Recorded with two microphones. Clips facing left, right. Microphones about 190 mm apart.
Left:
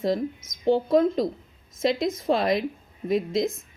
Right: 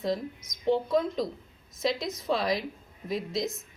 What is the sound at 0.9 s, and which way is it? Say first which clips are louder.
A woman's voice: left 6 dB; 55° left (ahead or behind).